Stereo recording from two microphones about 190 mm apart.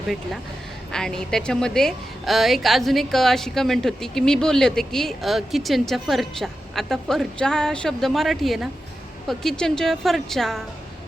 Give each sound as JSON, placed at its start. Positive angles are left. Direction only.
{"t": 0.9, "sound": "a woman's voice", "side_deg": 5}